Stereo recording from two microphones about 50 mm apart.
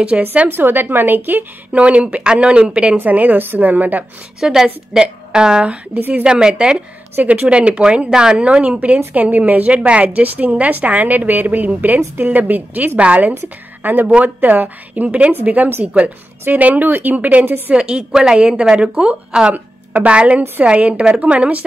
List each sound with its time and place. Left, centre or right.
0.1 s speech: centre
0.5 s a woman's voice: right
1.7 s speech: right
3.0 s a woman's voice: right
4.4 s a woman's voice: centre
5.9 s a woman's voice: right
6.2 s a woman's voice: centre
17.7 s a woman's voice: centre
19.5 s a woman's voice: right